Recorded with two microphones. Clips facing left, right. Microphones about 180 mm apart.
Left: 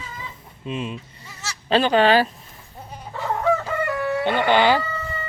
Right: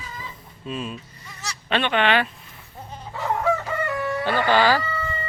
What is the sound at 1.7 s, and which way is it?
Speech, 35° left (ahead or behind).